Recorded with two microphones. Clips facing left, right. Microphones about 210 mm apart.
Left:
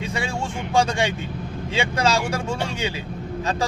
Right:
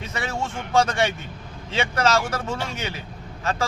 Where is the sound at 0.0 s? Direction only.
15° left (ahead or behind).